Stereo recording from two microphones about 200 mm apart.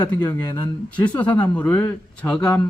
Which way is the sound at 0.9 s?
5° left (ahead or behind).